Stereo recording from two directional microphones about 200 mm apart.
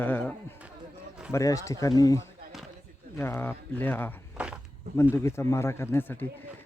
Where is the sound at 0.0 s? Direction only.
10° left (ahead or behind).